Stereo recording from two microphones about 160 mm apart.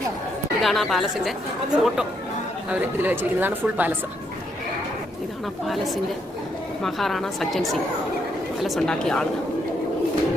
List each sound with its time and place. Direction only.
0.6 s a woman's voice: centre (ahead or behind)
5.6 s a woman's voice: centre (ahead or behind)